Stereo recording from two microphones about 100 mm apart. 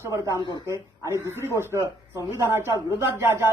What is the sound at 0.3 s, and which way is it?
Speech, 50° left (ahead or behind).